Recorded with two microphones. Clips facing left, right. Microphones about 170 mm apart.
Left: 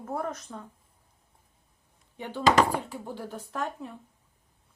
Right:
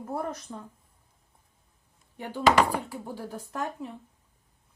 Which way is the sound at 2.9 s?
10° right (ahead or behind).